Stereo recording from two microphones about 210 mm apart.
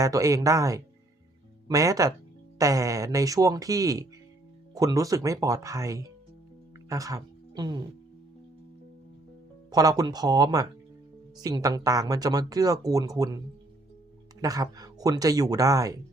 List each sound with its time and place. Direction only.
0.0 s speech: 15° right (ahead or behind)
6.8 s a sound: 15° right (ahead or behind)
9.7 s speech: 20° right (ahead or behind)
14.4 s speech: 15° right (ahead or behind)